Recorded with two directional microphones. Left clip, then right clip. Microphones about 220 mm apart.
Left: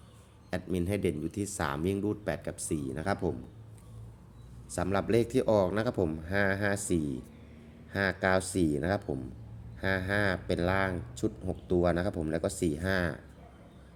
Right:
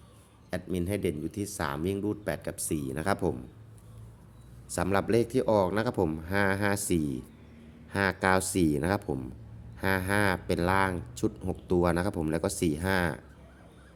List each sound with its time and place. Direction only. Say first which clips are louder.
0.5 s speech: even; centre (ahead or behind); by 3.3 s 20° right (ahead or behind)
4.7 s speech: right 2 dB; 20° right (ahead or behind)